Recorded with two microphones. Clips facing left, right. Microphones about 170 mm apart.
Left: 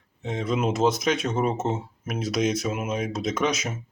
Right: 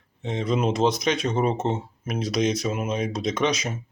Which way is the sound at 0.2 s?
5° left (ahead or behind).